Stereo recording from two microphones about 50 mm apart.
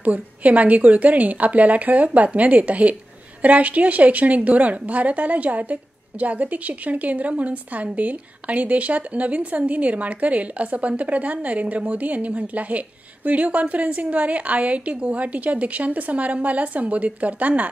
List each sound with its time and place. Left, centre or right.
0.0 s a woman's voice: right